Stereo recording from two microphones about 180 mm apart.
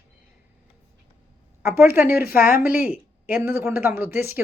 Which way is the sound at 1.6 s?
15° right (ahead or behind).